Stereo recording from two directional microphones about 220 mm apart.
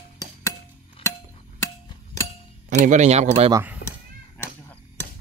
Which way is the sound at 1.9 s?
15° left (ahead or behind).